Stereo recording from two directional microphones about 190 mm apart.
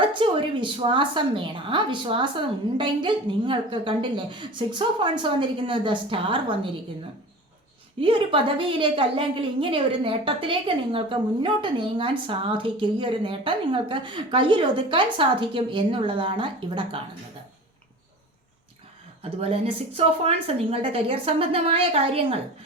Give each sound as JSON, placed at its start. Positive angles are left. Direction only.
{"t": 0.1, "sound": "a woman's voice", "side_deg": -25}
{"t": 8.0, "sound": "a woman's voice", "side_deg": -25}
{"t": 19.2, "sound": "a woman's voice", "side_deg": -30}